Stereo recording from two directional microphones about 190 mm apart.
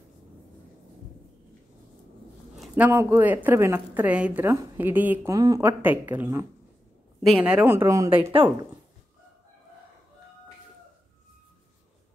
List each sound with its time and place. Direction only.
2.5 s a woman's voice: 5° right (ahead or behind)
8.2 s speech: 30° right (ahead or behind)